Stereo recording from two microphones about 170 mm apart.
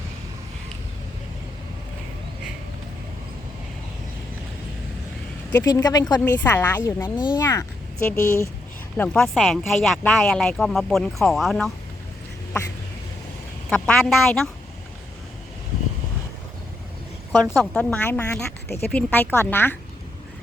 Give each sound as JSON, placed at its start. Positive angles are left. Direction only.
{"t": 5.5, "sound": "speech", "side_deg": 15}
{"t": 9.0, "sound": "speech", "side_deg": 5}
{"t": 13.7, "sound": "speech", "side_deg": 5}
{"t": 17.6, "sound": "speech", "side_deg": 5}